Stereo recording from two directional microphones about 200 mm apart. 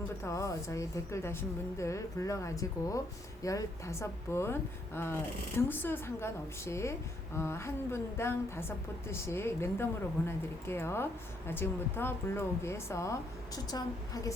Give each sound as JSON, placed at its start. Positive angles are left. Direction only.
{"t": 0.2, "sound": "a woman's voice", "side_deg": 15}
{"t": 5.5, "sound": "a woman's voice", "side_deg": 10}